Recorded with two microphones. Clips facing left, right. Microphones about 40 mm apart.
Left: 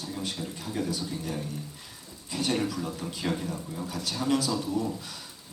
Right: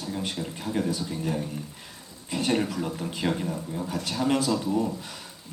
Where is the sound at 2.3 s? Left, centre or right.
Right.